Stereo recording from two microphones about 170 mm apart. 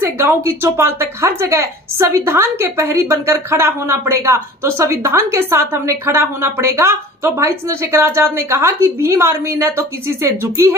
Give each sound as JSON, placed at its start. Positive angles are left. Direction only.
{"t": 0.5, "sound": "a woman's voice", "side_deg": -15}